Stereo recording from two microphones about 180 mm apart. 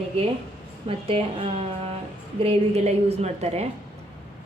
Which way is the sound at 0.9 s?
30° right (ahead or behind).